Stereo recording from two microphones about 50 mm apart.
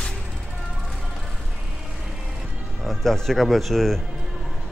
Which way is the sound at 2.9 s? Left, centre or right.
Centre.